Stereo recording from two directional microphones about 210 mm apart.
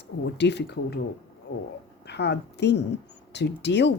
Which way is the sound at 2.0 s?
55° left (ahead or behind).